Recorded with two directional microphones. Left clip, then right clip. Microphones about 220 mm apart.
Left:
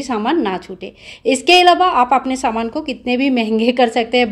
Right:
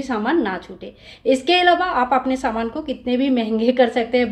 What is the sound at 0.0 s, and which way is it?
A woman's voice, 35° left (ahead or behind).